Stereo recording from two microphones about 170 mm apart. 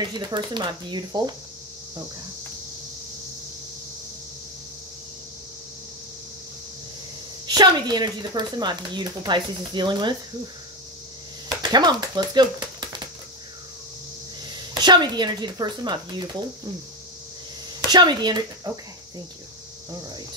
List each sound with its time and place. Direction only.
0.0 s speech: 25° right (ahead or behind)
7.4 s speech: 25° right (ahead or behind)
11.6 s speech: 25° right (ahead or behind)
14.5 s a woman's voice: 25° right (ahead or behind)
17.8 s speech: 25° right (ahead or behind)